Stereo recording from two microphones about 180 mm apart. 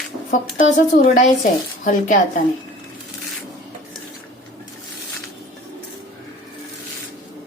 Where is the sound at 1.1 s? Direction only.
45° left (ahead or behind).